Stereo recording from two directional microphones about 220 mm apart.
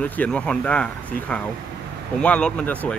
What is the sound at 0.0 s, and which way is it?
Speech, 5° left (ahead or behind).